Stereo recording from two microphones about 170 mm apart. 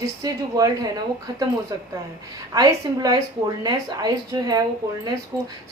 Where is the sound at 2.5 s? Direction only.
20° right (ahead or behind).